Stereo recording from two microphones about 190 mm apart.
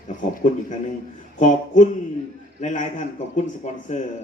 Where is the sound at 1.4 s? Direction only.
40° left (ahead or behind).